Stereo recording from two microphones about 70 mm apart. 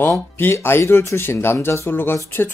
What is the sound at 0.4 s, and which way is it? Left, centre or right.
Speech, left.